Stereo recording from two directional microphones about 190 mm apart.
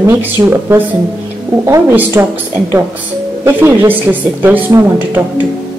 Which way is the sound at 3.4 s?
15° right (ahead or behind).